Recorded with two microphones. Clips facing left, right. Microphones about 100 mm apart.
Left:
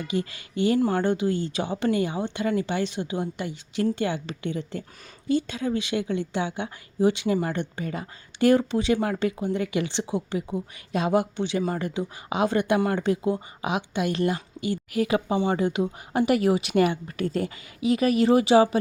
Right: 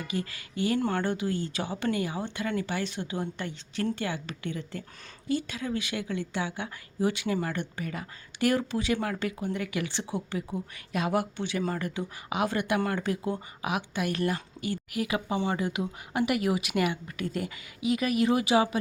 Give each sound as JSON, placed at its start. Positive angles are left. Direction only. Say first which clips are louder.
{"t": 0.1, "sound": "speech", "louder": "left 7 dB", "side_deg": 20}
{"t": 3.9, "sound": "speech", "louder": "left 6 dB", "side_deg": 25}